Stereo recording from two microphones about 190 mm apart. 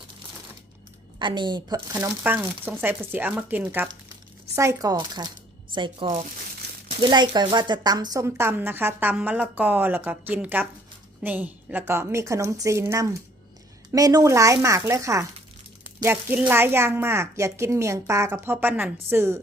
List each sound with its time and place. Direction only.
1.2 s speech: 25° right (ahead or behind)
1.9 s speech: 10° right (ahead or behind)